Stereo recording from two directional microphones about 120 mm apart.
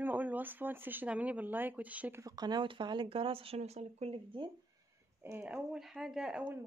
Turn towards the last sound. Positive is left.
turn(degrees=-5)  # may be behind; listen again after turning